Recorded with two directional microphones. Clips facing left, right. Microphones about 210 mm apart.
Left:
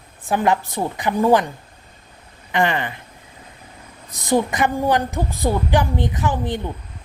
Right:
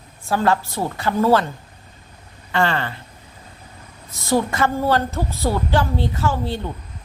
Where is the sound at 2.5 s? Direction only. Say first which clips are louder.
Left 1 dB; 15° left (ahead or behind).